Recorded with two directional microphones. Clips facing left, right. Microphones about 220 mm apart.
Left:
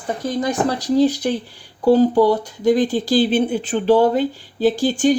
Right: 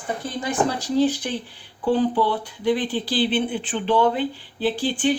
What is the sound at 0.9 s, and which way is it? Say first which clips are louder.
Speech: left 4 dB; 40° left (ahead or behind).